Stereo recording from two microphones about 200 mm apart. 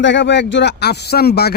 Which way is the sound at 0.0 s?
65° left (ahead or behind).